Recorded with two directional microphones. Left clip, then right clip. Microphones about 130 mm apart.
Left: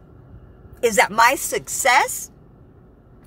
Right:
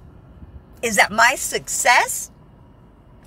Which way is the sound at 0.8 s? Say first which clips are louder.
Even; 40° left (ahead or behind).